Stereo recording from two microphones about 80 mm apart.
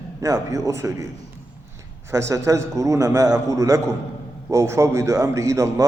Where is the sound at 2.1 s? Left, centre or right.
Right.